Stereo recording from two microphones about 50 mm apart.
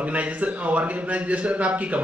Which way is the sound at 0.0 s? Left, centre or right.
Right.